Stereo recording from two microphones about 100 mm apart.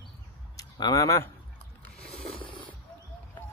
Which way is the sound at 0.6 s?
35° left (ahead or behind).